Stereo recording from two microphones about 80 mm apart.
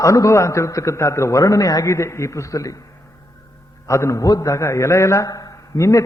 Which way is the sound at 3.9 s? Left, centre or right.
Left.